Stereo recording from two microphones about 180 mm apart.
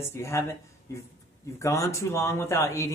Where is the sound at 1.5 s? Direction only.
15° left (ahead or behind).